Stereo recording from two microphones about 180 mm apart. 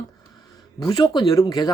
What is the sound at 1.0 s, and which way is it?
Speech, 20° left (ahead or behind).